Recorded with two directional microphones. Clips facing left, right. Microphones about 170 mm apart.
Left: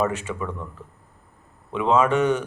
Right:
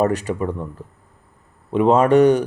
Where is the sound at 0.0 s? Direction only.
40° right (ahead or behind).